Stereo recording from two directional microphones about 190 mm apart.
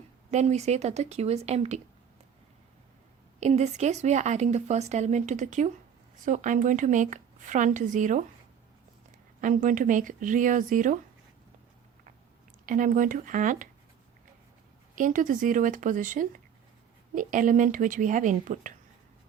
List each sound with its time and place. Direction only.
0.3 s speech: 35° right (ahead or behind)
3.4 s speech: 35° right (ahead or behind)
9.4 s speech: 45° right (ahead or behind)
12.6 s speech: 45° right (ahead or behind)
14.9 s speech: 45° right (ahead or behind)